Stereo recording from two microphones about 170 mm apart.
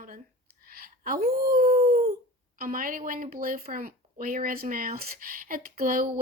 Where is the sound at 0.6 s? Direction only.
60° right (ahead or behind).